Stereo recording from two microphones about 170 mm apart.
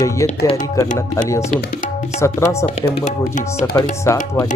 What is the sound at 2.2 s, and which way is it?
Speech, 15° left (ahead or behind).